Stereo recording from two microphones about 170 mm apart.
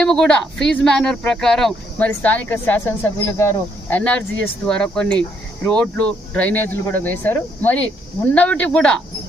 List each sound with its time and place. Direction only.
0.0 s a woman's voice: 5° left (ahead or behind)